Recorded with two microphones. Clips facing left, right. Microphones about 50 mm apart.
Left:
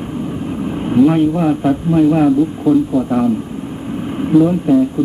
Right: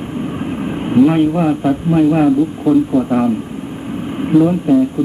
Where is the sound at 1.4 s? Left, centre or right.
Centre.